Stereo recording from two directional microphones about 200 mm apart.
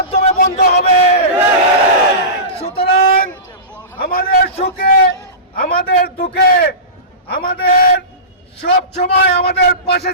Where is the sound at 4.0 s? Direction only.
45° left (ahead or behind).